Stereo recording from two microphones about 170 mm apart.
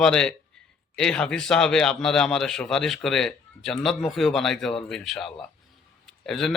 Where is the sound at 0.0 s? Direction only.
5° left (ahead or behind).